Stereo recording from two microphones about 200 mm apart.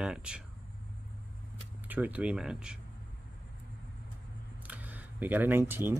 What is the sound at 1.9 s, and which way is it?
Speech, 5° right (ahead or behind).